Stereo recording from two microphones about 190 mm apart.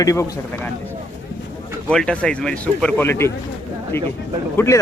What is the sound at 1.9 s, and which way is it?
Speech, 5° left (ahead or behind).